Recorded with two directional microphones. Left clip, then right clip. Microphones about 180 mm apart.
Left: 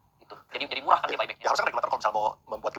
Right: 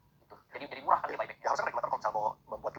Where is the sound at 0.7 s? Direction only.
25° left (ahead or behind).